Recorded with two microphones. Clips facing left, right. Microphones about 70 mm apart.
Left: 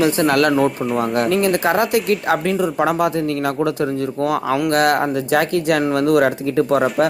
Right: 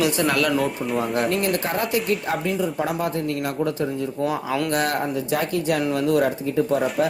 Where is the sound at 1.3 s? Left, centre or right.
Left.